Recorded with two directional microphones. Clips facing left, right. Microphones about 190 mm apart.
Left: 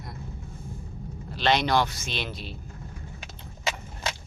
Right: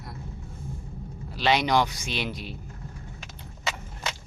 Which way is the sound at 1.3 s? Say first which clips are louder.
Even; 10° right (ahead or behind).